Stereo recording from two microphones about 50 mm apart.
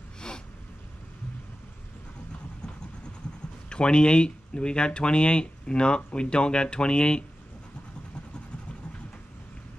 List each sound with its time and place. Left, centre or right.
3.6 s speech: centre